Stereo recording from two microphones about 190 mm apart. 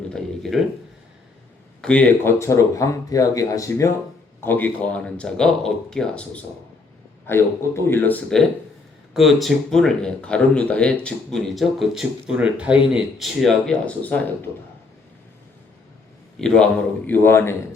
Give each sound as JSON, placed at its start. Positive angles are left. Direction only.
{"t": 0.5, "sound": "speech", "side_deg": 0}
{"t": 1.8, "sound": "speech", "side_deg": 5}
{"t": 16.4, "sound": "speech", "side_deg": 5}